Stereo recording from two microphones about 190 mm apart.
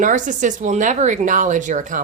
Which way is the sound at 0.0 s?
45° right (ahead or behind).